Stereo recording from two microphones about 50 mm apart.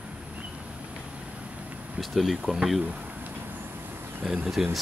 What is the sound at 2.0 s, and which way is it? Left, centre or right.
Speech, centre.